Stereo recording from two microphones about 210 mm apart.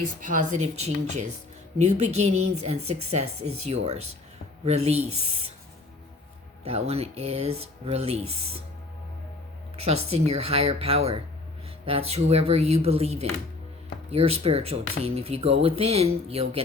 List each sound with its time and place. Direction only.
0.2 s speech: 40° right (ahead or behind)
6.7 s speech: 30° right (ahead or behind)
9.8 s speech: 30° right (ahead or behind)